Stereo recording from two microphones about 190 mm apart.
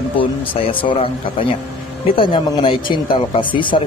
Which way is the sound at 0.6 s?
30° left (ahead or behind).